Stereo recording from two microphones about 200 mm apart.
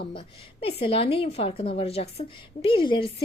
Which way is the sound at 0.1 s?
25° left (ahead or behind).